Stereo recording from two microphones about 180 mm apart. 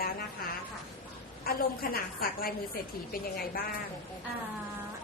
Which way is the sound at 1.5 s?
55° left (ahead or behind).